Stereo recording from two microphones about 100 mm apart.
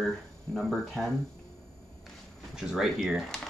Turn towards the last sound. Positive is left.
turn(degrees=-5)  # may be behind; listen again after turning